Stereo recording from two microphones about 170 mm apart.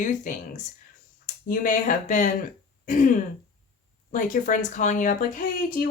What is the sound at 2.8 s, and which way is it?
Throat clearing, 50° left (ahead or behind).